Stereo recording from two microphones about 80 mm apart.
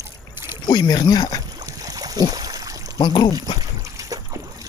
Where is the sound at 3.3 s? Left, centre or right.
Right.